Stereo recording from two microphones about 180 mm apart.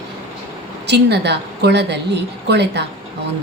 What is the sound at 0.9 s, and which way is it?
Speech, 70° right (ahead or behind).